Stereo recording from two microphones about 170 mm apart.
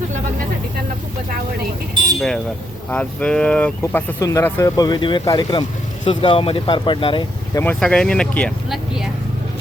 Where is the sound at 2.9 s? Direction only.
5° left (ahead or behind); by 7.2 s 30° left (ahead or behind).